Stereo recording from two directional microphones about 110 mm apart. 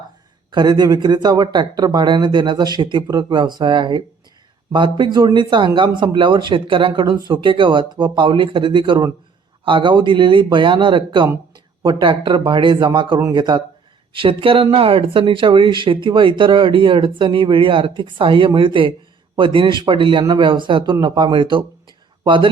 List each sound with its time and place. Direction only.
0.5 s speech: 40° right (ahead or behind)
14.1 s speech: 50° right (ahead or behind)